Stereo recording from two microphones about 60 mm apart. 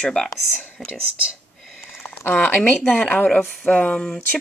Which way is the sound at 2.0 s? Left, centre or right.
Left.